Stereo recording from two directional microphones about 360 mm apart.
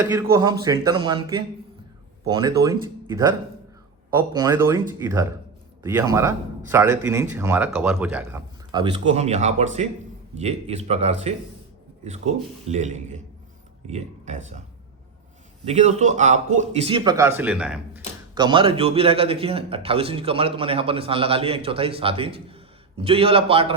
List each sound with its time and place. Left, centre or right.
0.0 s a man's voice: centre
15.6 s a man's voice: centre